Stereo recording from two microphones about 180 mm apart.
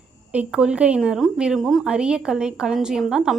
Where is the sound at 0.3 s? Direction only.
5° right (ahead or behind).